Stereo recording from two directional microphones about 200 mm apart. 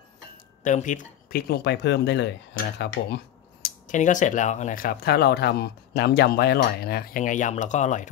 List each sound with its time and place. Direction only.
0.7 s speech: 40° left (ahead or behind)
3.8 s speech: 40° left (ahead or behind)